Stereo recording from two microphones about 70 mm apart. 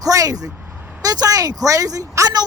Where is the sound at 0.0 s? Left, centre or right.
Right.